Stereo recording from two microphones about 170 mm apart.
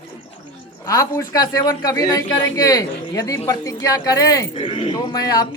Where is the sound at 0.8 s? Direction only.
20° left (ahead or behind).